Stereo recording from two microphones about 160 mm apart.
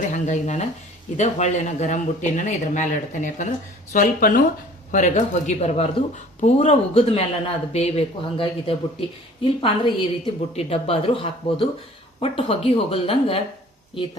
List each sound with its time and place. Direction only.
0.1 s speech: 45° left (ahead or behind)